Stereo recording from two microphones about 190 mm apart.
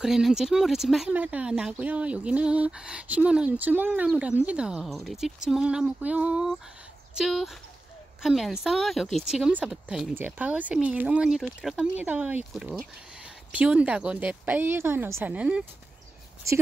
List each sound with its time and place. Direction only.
0.0 s speech: centre (ahead or behind)